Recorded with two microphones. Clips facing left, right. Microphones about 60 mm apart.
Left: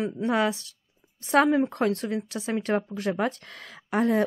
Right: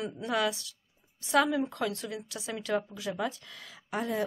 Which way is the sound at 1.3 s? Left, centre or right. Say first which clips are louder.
Left 6 dB; left.